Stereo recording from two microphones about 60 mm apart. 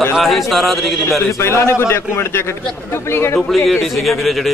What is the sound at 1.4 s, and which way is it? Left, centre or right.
A man's voice, left.